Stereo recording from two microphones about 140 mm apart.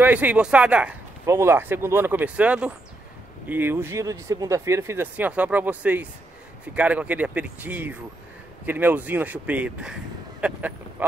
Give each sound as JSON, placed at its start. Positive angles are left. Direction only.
{"t": 0.0, "sound": "speech", "side_deg": -10}
{"t": 1.2, "sound": "speech", "side_deg": -20}